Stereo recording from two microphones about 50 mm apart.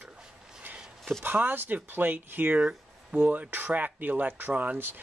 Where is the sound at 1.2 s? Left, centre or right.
Right.